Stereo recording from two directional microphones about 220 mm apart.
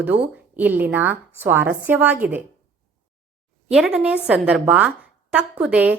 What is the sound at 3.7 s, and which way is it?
A woman's voice, centre (ahead or behind).